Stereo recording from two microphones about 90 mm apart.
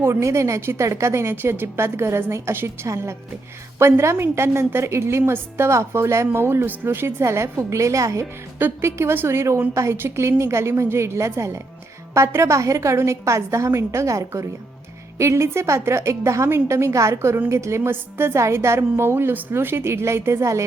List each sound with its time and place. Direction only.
0.0 s a woman's voice: 30° right (ahead or behind)
8.5 s a woman's voice: 25° right (ahead or behind)